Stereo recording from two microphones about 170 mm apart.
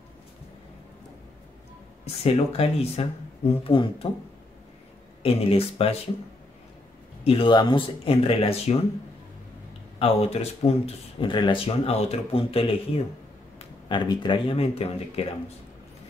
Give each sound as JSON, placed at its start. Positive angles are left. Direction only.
{"t": 2.2, "sound": "speech", "side_deg": 35}
{"t": 5.2, "sound": "speech", "side_deg": 35}
{"t": 7.2, "sound": "speech", "side_deg": 30}
{"t": 9.9, "sound": "speech", "side_deg": 35}